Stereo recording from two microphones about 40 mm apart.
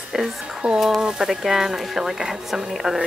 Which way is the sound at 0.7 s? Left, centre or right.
Centre.